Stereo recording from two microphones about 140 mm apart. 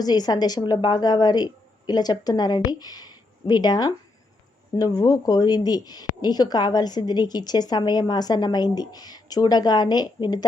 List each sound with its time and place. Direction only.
0.0 s a woman's voice: 30° left (ahead or behind)